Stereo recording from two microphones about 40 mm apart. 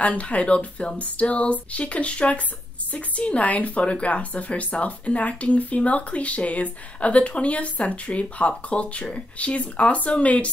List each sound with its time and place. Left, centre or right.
0.0 s speech: left